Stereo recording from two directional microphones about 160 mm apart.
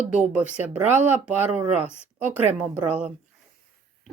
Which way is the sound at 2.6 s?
10° right (ahead or behind).